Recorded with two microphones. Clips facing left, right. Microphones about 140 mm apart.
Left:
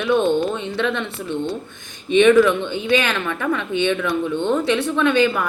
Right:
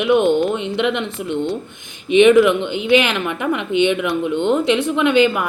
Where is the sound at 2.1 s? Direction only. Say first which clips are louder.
Right 2 dB; 15° right (ahead or behind).